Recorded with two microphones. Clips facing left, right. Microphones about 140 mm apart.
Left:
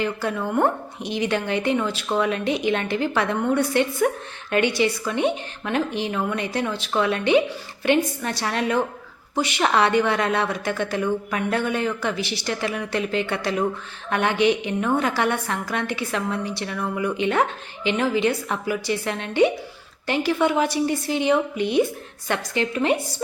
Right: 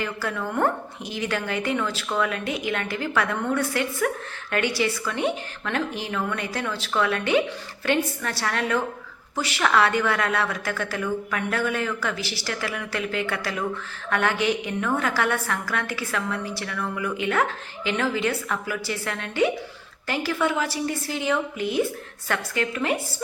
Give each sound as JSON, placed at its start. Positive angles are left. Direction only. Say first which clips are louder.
{"t": 0.0, "sound": "a woman's voice", "louder": "left 4 dB", "side_deg": 20}